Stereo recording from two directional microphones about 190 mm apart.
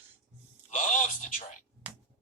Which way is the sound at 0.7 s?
40° left (ahead or behind).